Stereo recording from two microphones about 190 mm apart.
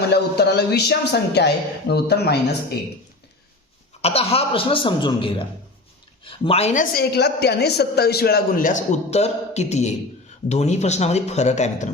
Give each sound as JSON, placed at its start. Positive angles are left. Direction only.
{"t": 0.1, "sound": "a woman's voice", "side_deg": 60}
{"t": 4.0, "sound": "speech", "side_deg": 30}
{"t": 6.9, "sound": "a woman's voice", "side_deg": 55}